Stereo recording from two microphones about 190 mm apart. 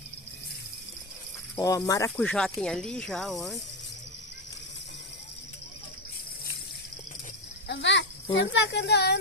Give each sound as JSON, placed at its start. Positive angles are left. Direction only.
{"t": 1.5, "sound": "cricket", "side_deg": 20}
{"t": 2.0, "sound": "speech", "side_deg": 5}
{"t": 7.7, "sound": "a child's voice", "side_deg": 70}